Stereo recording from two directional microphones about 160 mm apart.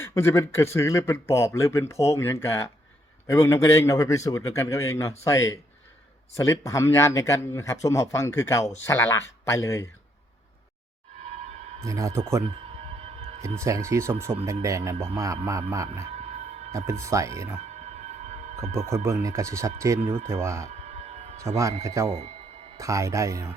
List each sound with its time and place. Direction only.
0.0 s speech: 15° left (ahead or behind)
11.2 s a sound: 45° right (ahead or behind)
11.9 s a man's voice: 20° right (ahead or behind)
13.0 s music: 40° right (ahead or behind)
13.6 s a man's voice: 20° right (ahead or behind)
16.1 s music: 45° right (ahead or behind)
16.7 s a man's voice: 20° right (ahead or behind)
17.7 s a sound: 45° right (ahead or behind)
19.0 s a man's voice: 20° right (ahead or behind)
20.7 s music: 45° right (ahead or behind)
21.4 s a man's voice: 20° right (ahead or behind)